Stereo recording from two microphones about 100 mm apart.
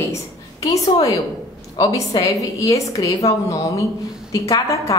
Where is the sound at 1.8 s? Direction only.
35° left (ahead or behind).